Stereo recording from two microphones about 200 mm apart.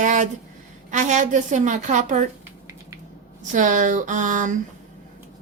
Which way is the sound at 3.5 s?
40° right (ahead or behind).